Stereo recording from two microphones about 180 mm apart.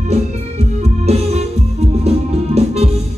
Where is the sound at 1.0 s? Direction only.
35° right (ahead or behind).